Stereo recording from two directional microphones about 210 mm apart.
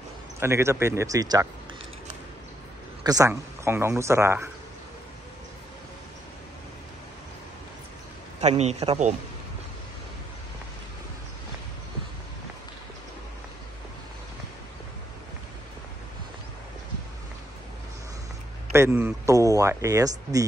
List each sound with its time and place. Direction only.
0.4 s speech: 10° right (ahead or behind)
3.0 s speech: 15° right (ahead or behind)
8.4 s a man's voice: 30° right (ahead or behind)
18.7 s speech: 10° right (ahead or behind)